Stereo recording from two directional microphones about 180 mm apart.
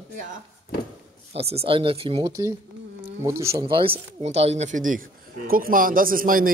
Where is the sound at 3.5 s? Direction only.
30° right (ahead or behind); by 6.5 s 50° right (ahead or behind).